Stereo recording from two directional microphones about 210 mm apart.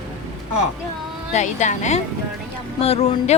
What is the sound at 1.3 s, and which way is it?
Speech, 35° left (ahead or behind).